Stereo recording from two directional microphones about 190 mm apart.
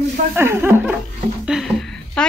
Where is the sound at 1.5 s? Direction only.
Centre (ahead or behind).